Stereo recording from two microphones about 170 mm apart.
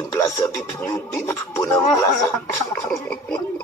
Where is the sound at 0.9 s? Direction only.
15° left (ahead or behind).